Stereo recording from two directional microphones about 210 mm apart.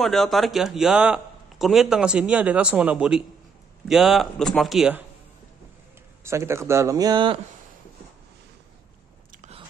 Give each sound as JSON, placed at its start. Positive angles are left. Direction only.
{"t": 0.0, "sound": "a man's voice", "side_deg": 0}
{"t": 6.2, "sound": "speech", "side_deg": -15}
{"t": 9.3, "sound": "biting", "side_deg": -35}